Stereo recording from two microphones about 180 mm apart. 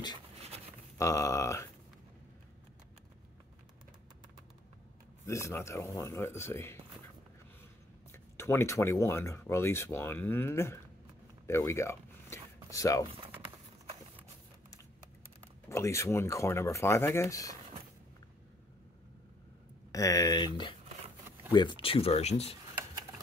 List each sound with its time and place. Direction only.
0.9 s speech: 15° left (ahead or behind)
5.2 s speech: 15° left (ahead or behind)
8.1 s speech: 15° left (ahead or behind)
11.4 s a sound: 15° left (ahead or behind)
15.7 s speech: 15° left (ahead or behind)
19.9 s speech: 20° left (ahead or behind); by 22.6 s 35° left (ahead or behind)